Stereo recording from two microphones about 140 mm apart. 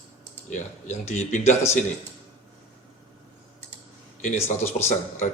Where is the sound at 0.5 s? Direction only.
55° left (ahead or behind).